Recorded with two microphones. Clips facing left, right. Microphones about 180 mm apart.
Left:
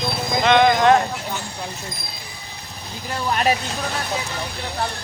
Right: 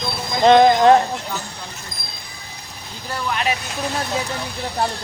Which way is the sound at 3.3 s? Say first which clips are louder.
Left 4 dB; 40° left (ahead or behind).